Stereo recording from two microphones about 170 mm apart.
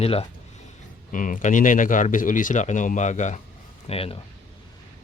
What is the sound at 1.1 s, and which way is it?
Speech, 50° left (ahead or behind).